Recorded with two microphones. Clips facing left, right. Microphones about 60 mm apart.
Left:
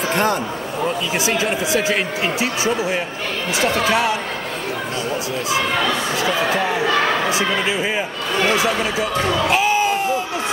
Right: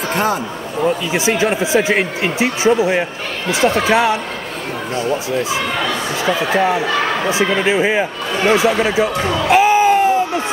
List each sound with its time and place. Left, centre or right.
0.1 s a man's voice: centre
1.1 s speech: right
6.1 s speech: right
9.2 s speech: centre
9.5 s a sound: right